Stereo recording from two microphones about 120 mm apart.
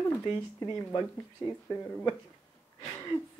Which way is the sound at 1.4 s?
25° left (ahead or behind).